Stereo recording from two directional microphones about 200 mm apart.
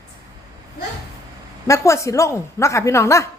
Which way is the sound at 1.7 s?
15° left (ahead or behind).